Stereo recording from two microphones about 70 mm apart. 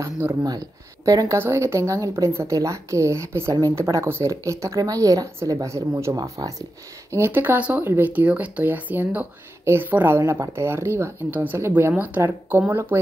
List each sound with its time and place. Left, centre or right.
0.5 s speech: right
1.4 s speech: right
7.1 s speech: right
8.1 s speech: right
11.9 s speech: right